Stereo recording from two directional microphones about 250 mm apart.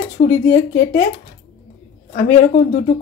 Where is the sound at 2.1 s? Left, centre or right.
Left.